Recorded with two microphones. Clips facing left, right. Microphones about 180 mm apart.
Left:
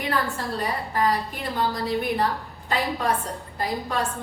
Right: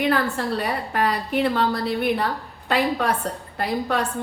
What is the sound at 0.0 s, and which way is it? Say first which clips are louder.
A woman's voice: right 5 dB; 70° right (ahead or behind).